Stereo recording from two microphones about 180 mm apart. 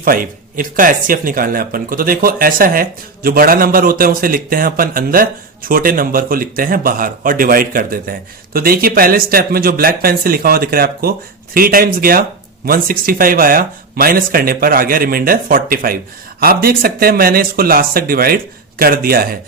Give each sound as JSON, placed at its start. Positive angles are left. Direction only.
{"t": 0.0, "sound": "a man's voice", "side_deg": -50}